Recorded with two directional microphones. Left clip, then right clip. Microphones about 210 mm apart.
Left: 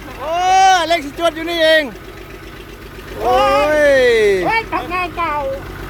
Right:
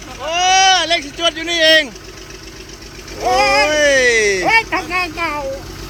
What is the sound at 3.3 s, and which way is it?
Speech, 35° right (ahead or behind).